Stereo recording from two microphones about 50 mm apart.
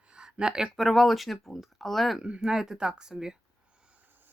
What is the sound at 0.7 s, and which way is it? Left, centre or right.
Speech, centre.